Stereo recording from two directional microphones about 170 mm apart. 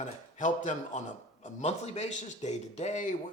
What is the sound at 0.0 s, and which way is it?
A man's voice, 45° left (ahead or behind).